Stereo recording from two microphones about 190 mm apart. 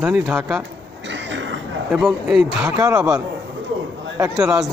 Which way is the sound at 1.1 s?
70° right (ahead or behind).